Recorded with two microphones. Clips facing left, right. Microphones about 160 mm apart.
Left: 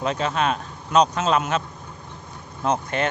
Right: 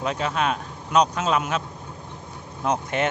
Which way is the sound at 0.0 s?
5° right (ahead or behind).